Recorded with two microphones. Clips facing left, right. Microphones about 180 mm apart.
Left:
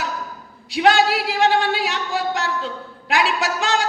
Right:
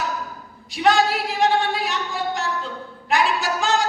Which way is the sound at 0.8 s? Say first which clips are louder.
Left 2 dB; 70° left (ahead or behind).